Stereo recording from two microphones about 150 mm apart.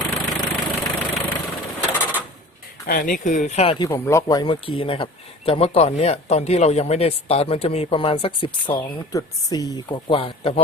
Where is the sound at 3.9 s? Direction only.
20° left (ahead or behind); by 8.7 s 35° left (ahead or behind).